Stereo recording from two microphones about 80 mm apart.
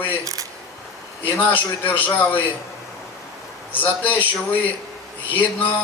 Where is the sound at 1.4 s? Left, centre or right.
Left.